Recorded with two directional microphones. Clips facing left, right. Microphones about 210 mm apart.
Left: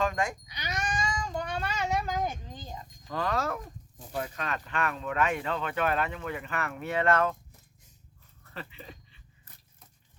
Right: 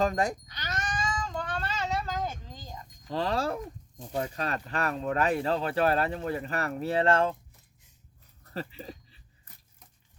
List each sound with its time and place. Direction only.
0.0 s speech: 35° right (ahead or behind)
0.4 s cat: 10° left (ahead or behind)
3.1 s speech: 30° right (ahead or behind)
8.4 s dog: 35° right (ahead or behind)